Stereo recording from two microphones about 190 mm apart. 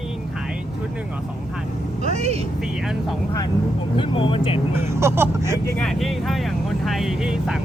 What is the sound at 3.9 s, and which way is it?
Speech, 25° left (ahead or behind).